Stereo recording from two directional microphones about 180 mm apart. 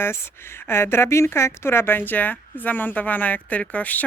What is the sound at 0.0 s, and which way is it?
Speech, 15° left (ahead or behind).